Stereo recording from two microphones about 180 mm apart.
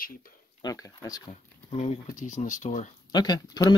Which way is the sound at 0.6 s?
20° left (ahead or behind).